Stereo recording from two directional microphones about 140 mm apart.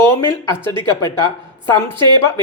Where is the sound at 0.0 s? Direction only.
20° left (ahead or behind).